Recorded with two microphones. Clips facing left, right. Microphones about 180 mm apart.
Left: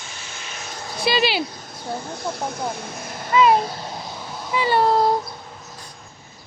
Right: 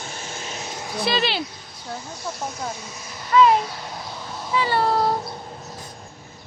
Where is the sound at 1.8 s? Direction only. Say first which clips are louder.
Left 5 dB; 60° left (ahead or behind).